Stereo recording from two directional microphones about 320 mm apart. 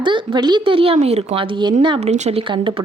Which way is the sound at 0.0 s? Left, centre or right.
Centre.